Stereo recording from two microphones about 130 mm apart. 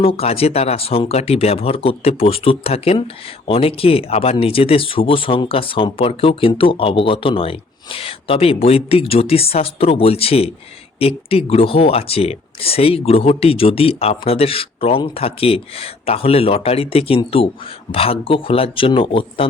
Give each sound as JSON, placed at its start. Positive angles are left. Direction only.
{"t": 0.0, "sound": "speech", "side_deg": 45}